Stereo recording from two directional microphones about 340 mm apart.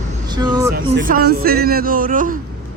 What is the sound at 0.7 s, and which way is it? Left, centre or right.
A man's voice, right.